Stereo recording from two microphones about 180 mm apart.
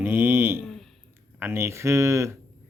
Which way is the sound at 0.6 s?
Centre (ahead or behind).